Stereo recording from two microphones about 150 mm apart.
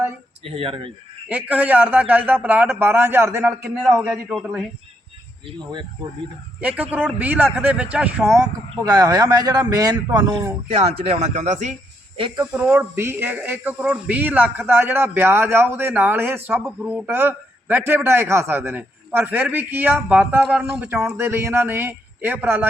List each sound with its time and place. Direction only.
0.4 s speech: 40° right (ahead or behind)
1.3 s a man's voice: 10° right (ahead or behind)
6.6 s a man's voice: 10° right (ahead or behind)
8.3 s speech: 20° right (ahead or behind)
10.8 s speech: 40° right (ahead or behind)
12.1 s speech: 35° right (ahead or behind)
12.5 s a man's voice: 10° right (ahead or behind)